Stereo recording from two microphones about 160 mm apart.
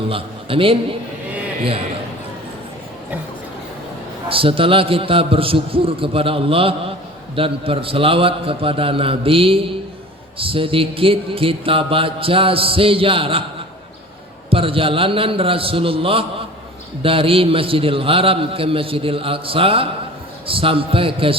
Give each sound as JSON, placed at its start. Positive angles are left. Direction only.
{"t": 0.1, "sound": "a man's voice", "side_deg": -35}
{"t": 4.3, "sound": "mantra", "side_deg": -35}
{"t": 14.5, "sound": "mantra", "side_deg": -35}